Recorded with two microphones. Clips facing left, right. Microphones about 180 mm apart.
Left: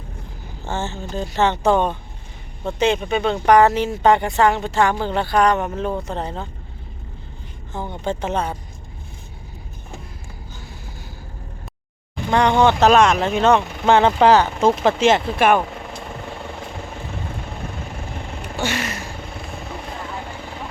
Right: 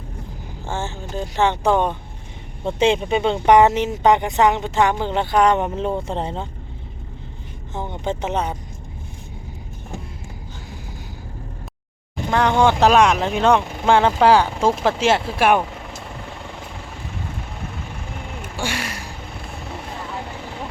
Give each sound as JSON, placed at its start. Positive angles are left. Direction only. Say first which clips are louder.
{"t": 0.6, "sound": "speech", "louder": "left 1 dB", "side_deg": -10}
{"t": 2.6, "sound": "speech", "louder": "right 1 dB", "side_deg": -25}
{"t": 7.7, "sound": "speech", "louder": "even", "side_deg": -20}
{"t": 12.3, "sound": "speech", "louder": "left 1 dB", "side_deg": -5}
{"t": 18.6, "sound": "a sound", "louder": "left 3 dB", "side_deg": -10}